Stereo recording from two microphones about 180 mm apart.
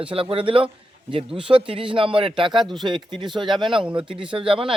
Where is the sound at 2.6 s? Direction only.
Centre (ahead or behind).